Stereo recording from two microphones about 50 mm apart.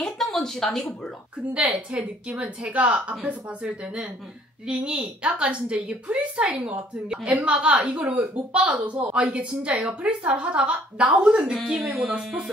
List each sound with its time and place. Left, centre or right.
0.0 s a sound: centre
1.5 s a woman's voice: right
11.8 s speech: centre